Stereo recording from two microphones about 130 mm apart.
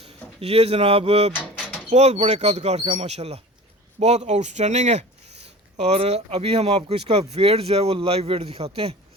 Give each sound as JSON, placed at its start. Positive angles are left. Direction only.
{"t": 0.3, "sound": "speech", "side_deg": -50}